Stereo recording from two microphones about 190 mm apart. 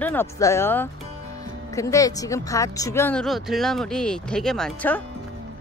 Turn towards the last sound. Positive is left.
turn(degrees=5)  # may be behind; listen again after turning